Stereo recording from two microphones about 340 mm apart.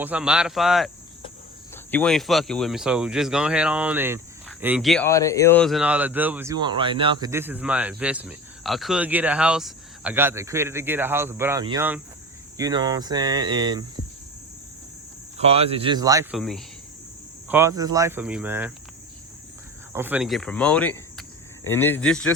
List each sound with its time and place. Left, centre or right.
0.0 s speech: centre
15.4 s speech: centre
17.5 s speech: centre
19.9 s speech: centre